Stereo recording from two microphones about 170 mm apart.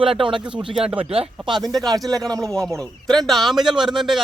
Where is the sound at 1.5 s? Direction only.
25° right (ahead or behind).